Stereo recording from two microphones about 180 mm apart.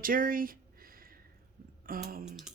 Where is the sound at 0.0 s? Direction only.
50° right (ahead or behind).